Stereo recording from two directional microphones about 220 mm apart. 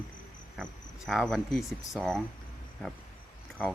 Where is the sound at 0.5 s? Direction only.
Centre (ahead or behind).